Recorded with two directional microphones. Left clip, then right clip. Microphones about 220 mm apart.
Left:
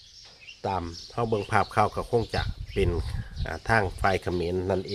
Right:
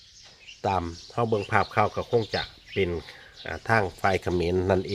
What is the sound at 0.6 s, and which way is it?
Speech, 10° right (ahead or behind).